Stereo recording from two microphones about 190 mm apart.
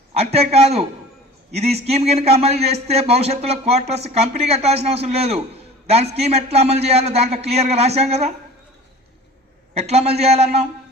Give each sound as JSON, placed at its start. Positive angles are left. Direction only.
{"t": 0.3, "sound": "a man's voice", "side_deg": -35}
{"t": 9.7, "sound": "a man's voice", "side_deg": -35}